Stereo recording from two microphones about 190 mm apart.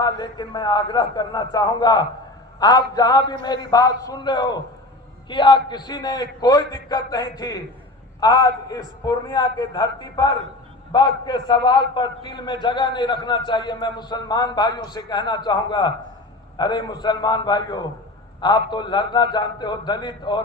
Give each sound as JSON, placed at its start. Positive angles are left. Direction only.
{"t": 0.0, "sound": "a man's voice", "side_deg": 20}